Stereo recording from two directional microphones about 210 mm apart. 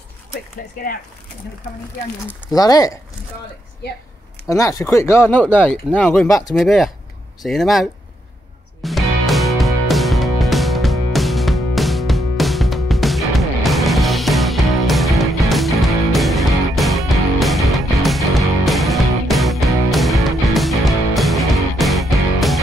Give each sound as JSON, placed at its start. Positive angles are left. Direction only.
{"t": 2.5, "sound": "speech", "side_deg": 15}
{"t": 3.8, "sound": "a woman's voice", "side_deg": 50}
{"t": 4.5, "sound": "speech", "side_deg": 15}
{"t": 8.8, "sound": "music", "side_deg": 0}